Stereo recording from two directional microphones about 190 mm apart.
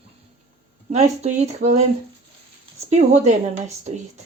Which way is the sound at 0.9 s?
35° right (ahead or behind).